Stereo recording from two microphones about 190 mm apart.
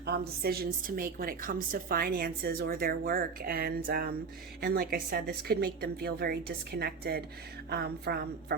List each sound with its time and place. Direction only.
0.0 s a woman's voice: 55° right (ahead or behind)